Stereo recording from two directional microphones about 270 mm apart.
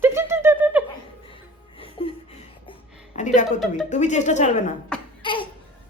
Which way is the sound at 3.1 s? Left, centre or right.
Left.